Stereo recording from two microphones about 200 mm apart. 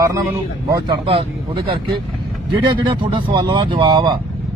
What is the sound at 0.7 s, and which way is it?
A man's voice, 20° right (ahead or behind).